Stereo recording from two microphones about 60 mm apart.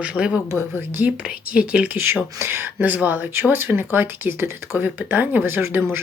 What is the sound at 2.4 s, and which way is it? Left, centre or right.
Speech, right.